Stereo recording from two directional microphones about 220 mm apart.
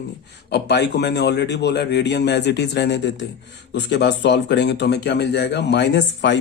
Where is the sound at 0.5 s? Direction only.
50° left (ahead or behind).